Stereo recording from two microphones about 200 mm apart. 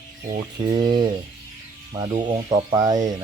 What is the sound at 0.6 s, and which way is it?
Speech, 20° right (ahead or behind).